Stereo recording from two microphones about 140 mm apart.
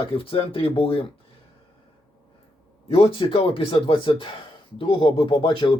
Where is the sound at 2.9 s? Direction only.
40° left (ahead or behind).